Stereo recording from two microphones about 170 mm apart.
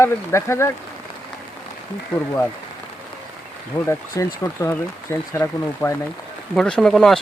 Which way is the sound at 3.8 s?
15° left (ahead or behind).